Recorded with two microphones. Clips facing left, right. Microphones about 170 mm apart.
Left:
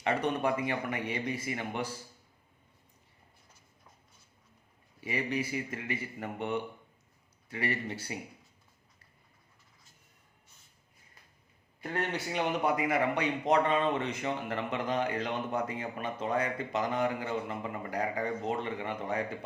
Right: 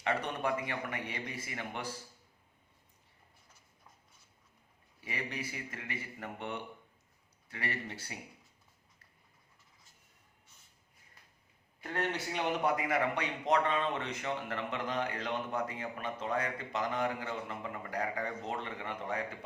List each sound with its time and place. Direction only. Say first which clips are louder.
0.0 s a man's voice: left 4 dB; 20° left (ahead or behind)
5.0 s a man's voice: left 7 dB; 10° left (ahead or behind)
11.8 s a man's voice: left 2 dB; 10° left (ahead or behind)